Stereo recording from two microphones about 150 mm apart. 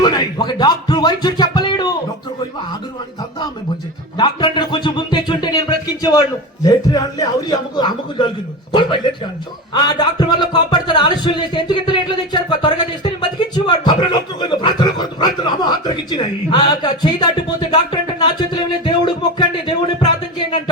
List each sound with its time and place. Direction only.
0.0 s music: 30° left (ahead or behind)
4.2 s a man's voice: 30° left (ahead or behind)
9.7 s a sound: 30° left (ahead or behind)